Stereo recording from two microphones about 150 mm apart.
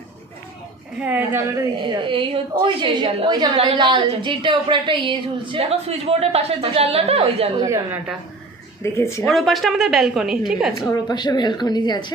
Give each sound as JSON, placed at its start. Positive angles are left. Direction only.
{"t": 0.9, "sound": "a woman's voice", "side_deg": -10}
{"t": 1.8, "sound": "a woman's voice", "side_deg": -35}
{"t": 7.6, "sound": "a woman's voice", "side_deg": -15}
{"t": 8.8, "sound": "a woman's voice", "side_deg": 20}
{"t": 9.3, "sound": "a woman's voice", "side_deg": 0}
{"t": 10.8, "sound": "a woman's voice", "side_deg": 25}